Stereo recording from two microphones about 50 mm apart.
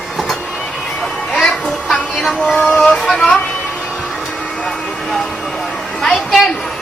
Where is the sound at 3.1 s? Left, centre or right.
Centre.